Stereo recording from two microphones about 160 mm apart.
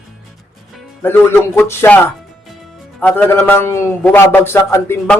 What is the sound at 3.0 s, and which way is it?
Speech, 10° left (ahead or behind).